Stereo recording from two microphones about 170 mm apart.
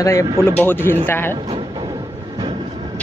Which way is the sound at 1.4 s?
30° right (ahead or behind).